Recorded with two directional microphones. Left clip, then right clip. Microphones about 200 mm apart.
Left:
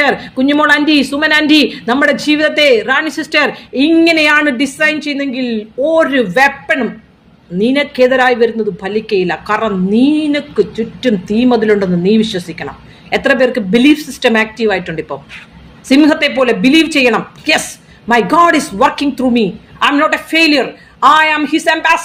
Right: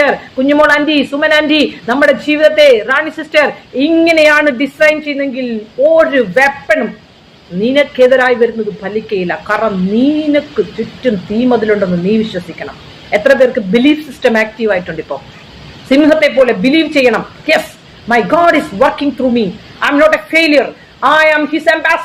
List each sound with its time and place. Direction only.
0.0 s a woman's voice: 60° left (ahead or behind)
11.0 s a woman's voice: 55° left (ahead or behind)